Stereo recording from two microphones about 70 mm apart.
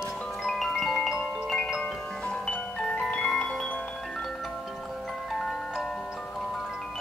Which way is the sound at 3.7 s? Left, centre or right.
Centre.